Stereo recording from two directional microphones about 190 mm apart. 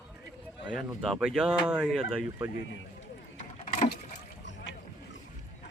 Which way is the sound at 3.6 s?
40° left (ahead or behind).